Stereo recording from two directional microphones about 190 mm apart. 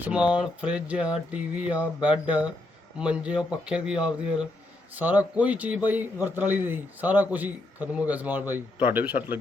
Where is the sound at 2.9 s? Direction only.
5° right (ahead or behind).